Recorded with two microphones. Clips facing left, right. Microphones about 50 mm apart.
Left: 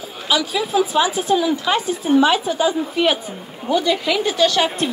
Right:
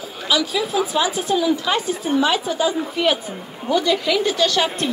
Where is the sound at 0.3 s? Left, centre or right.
Left.